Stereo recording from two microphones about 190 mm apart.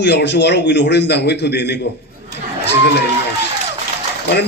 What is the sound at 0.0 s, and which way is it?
A man's voice, 65° left (ahead or behind).